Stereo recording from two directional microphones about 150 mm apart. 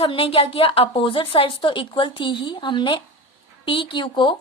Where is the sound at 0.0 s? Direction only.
40° left (ahead or behind).